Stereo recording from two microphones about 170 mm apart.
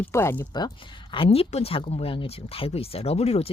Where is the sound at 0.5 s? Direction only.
25° left (ahead or behind).